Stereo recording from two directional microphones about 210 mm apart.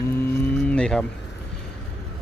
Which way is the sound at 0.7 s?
5° left (ahead or behind).